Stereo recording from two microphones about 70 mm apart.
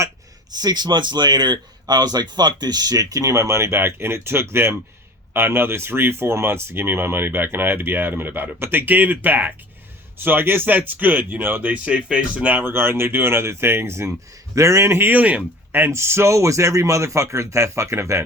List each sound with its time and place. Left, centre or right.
0.5 s speech: right
11.9 s speech: centre; by 18.2 s right